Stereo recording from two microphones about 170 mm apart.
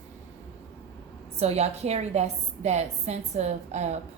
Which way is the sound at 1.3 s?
40° right (ahead or behind).